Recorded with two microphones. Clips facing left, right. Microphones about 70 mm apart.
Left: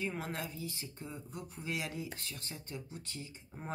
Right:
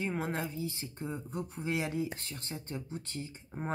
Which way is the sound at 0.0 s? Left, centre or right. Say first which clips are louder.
Right 4 dB; right.